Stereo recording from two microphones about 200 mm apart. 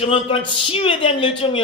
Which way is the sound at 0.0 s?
30° left (ahead or behind).